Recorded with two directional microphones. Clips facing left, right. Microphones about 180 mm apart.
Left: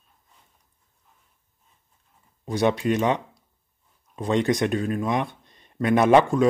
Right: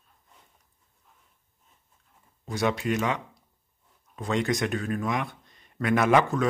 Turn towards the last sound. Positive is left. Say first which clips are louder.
# left 5 dB
turn(degrees=30)  # may be behind; listen again after turning